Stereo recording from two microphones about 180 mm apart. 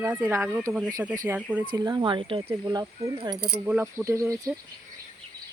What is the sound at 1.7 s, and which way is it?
Speech, 25° right (ahead or behind).